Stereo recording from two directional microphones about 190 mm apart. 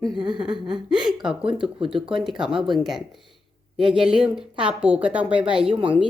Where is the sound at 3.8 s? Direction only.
5° right (ahead or behind).